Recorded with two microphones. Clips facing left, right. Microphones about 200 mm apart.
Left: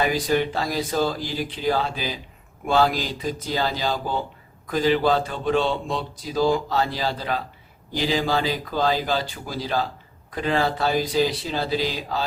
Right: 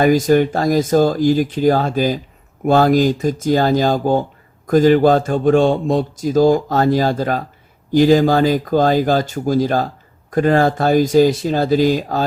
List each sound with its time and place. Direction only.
0.0 s speech: 45° right (ahead or behind)